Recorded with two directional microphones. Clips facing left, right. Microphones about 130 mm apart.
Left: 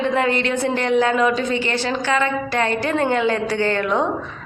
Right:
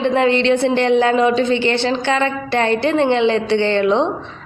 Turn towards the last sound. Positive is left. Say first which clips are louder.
# right 4 dB
turn(degrees=-25)  # may be behind; listen again after turning